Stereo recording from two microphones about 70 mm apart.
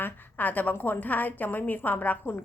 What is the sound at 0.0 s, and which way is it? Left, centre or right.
A woman's voice, left.